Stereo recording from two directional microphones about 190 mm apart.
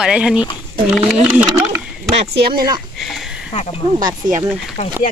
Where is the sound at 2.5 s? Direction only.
20° right (ahead or behind).